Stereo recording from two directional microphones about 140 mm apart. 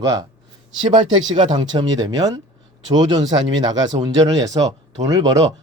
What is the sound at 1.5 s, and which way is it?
Speech, 30° right (ahead or behind).